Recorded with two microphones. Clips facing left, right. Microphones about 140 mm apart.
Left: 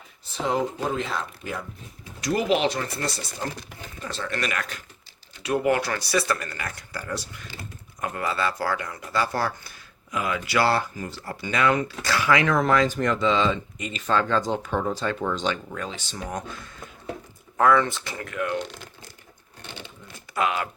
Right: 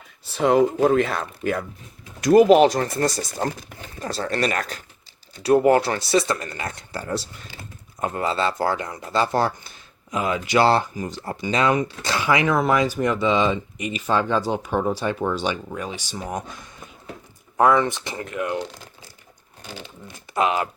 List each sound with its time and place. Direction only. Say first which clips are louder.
0.3 s speech: right 8 dB; 60° right (ahead or behind)
2.2 s speech: right 10 dB; 50° right (ahead or behind); by 18.6 s 20° right (ahead or behind)
20.3 s speech: right 4 dB; 25° right (ahead or behind)